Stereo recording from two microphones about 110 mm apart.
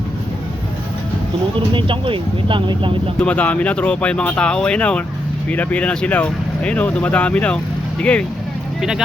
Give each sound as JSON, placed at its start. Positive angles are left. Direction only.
{"t": 1.7, "sound": "speech", "side_deg": -50}
{"t": 3.2, "sound": "speech", "side_deg": 15}
{"t": 8.8, "sound": "speech", "side_deg": -5}